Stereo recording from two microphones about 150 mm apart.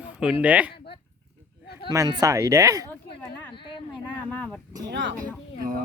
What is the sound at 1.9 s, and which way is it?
Speech, 25° right (ahead or behind).